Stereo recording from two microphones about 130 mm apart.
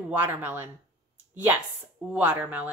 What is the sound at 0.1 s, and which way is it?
A woman's voice, 15° right (ahead or behind).